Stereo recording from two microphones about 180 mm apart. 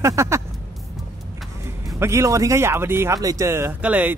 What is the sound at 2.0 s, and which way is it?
A woman's voice, 15° right (ahead or behind).